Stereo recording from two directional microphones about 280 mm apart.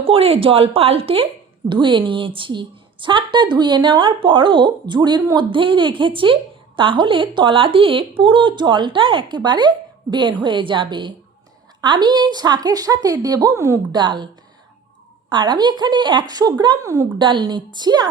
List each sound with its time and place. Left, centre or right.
0.0 s a woman's voice: centre
15.3 s a woman's voice: centre